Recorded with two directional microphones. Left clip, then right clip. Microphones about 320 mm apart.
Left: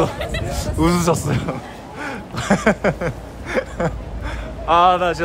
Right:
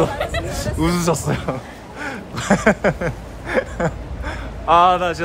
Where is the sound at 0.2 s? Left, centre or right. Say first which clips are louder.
Right 3 dB; centre.